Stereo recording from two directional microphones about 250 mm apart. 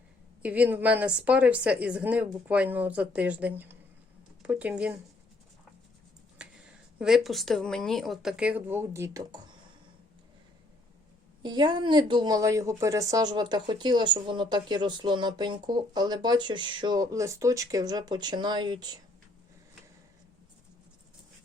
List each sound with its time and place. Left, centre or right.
0.4 s a woman's voice: centre
6.4 s speech: centre
11.4 s speech: centre